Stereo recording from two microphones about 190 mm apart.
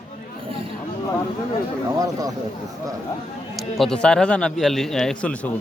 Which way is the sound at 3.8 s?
5° left (ahead or behind).